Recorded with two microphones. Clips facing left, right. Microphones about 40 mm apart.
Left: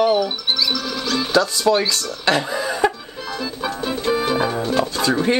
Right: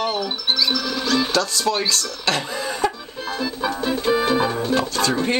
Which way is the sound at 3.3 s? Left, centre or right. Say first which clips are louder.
Right 1 dB; centre.